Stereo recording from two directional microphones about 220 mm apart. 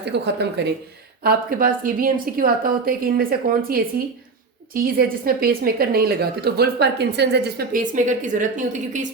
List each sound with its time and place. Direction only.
0.0 s a woman's voice: 50° right (ahead or behind)